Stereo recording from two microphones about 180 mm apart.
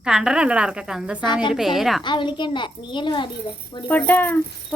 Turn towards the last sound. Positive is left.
turn(degrees=10)  # may be behind; listen again after turning